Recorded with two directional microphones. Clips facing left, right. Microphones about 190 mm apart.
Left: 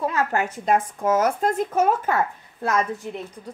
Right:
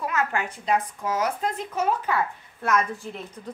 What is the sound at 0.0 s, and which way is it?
Speech, 35° left (ahead or behind).